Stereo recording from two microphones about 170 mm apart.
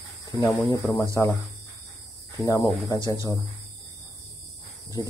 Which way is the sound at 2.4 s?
20° left (ahead or behind).